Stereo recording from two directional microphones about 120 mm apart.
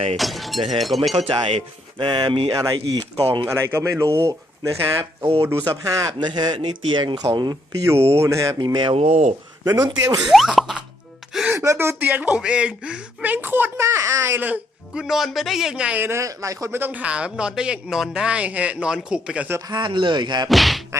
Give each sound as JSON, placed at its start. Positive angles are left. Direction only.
{"t": 0.2, "sound": "speech", "side_deg": 0}
{"t": 1.1, "sound": "speech", "side_deg": -60}
{"t": 8.2, "sound": "speech", "side_deg": -25}
{"t": 8.5, "sound": "speech", "side_deg": -35}
{"t": 9.0, "sound": "speech", "side_deg": -75}
{"t": 9.6, "sound": "speech", "side_deg": -35}
{"t": 10.2, "sound": "speech", "side_deg": -5}
{"t": 11.5, "sound": "speech", "side_deg": -25}
{"t": 19.5, "sound": "speech", "side_deg": -35}
{"t": 20.5, "sound": "speech", "side_deg": 0}